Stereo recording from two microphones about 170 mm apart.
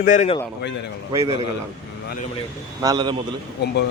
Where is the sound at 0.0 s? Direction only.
50° left (ahead or behind).